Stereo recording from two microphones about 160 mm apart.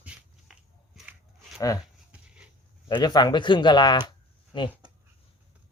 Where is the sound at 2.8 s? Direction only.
25° left (ahead or behind).